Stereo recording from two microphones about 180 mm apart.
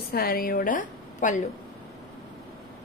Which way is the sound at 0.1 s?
60° left (ahead or behind).